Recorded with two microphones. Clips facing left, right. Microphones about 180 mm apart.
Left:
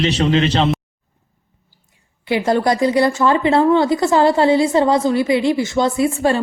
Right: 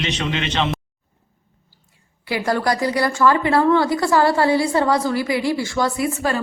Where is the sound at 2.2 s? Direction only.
20° left (ahead or behind).